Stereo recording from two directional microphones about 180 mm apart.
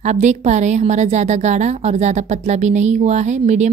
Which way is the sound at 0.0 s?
40° right (ahead or behind).